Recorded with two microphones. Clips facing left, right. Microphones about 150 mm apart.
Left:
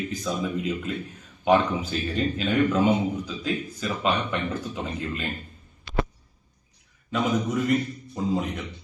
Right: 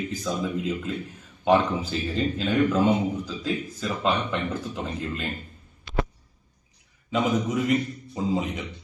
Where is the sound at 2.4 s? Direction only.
10° left (ahead or behind).